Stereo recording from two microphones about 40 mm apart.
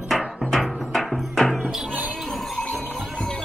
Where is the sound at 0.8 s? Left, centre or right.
Centre.